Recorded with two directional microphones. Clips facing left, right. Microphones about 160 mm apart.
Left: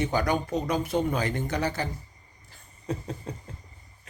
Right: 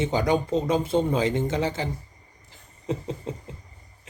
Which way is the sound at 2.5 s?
20° right (ahead or behind).